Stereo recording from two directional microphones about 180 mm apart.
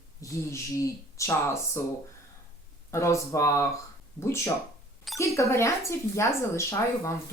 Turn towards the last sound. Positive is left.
turn(degrees=15)  # may be behind; listen again after turning